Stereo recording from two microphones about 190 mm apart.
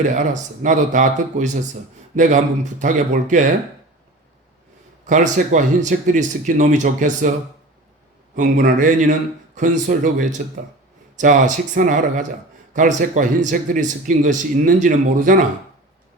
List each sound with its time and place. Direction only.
0.0 s speech: 40° right (ahead or behind)
5.0 s speech: 40° right (ahead or behind)
8.4 s a man's voice: 45° right (ahead or behind)